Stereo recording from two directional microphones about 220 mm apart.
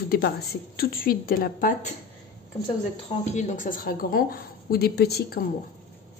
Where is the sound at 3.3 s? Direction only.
35° left (ahead or behind).